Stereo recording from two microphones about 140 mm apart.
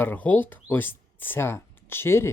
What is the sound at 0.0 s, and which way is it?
Speech, 10° left (ahead or behind).